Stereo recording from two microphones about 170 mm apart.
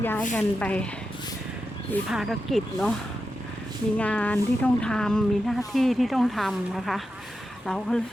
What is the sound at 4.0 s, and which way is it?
A woman's voice, 10° left (ahead or behind).